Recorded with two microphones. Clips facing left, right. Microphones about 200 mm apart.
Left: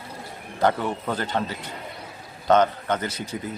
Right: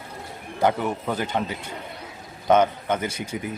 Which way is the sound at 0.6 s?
10° right (ahead or behind).